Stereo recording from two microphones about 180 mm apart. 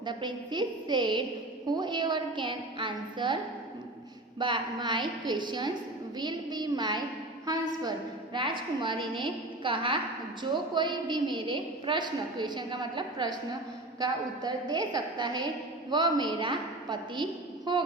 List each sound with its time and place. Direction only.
0.0 s a woman's voice: 25° right (ahead or behind)
4.4 s a woman's voice: 25° right (ahead or behind)